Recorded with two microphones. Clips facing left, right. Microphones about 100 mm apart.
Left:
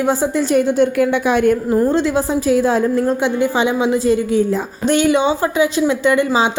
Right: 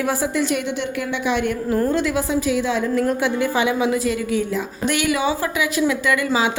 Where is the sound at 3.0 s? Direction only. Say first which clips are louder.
Left 4 dB; 25° left (ahead or behind).